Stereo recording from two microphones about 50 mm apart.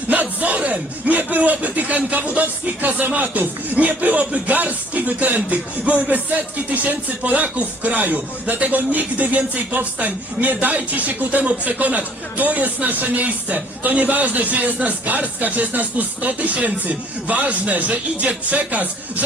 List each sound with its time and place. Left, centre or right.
0.1 s speech: right